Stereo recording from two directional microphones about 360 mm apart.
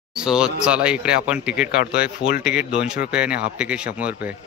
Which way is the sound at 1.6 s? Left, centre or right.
Left.